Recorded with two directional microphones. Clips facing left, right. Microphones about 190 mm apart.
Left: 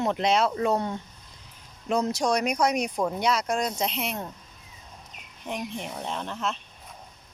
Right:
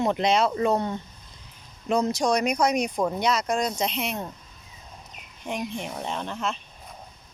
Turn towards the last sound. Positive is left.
turn(degrees=0)  # may be behind; listen again after turning